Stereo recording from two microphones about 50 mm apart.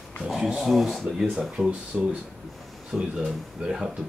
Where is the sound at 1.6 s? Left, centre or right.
Right.